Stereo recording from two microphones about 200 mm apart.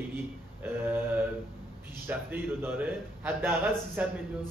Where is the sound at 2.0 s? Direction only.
10° right (ahead or behind).